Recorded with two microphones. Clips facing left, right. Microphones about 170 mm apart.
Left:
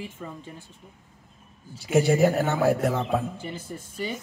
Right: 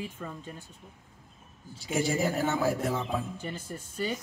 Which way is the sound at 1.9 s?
65° left (ahead or behind).